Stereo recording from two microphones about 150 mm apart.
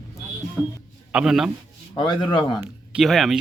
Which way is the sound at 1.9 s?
30° left (ahead or behind).